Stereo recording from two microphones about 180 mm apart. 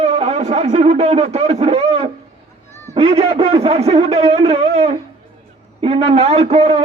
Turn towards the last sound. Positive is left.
turn(degrees=-35)  # may be behind; listen again after turning